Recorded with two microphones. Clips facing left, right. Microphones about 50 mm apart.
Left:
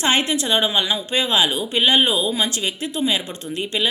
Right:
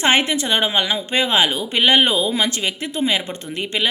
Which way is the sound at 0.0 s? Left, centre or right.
Right.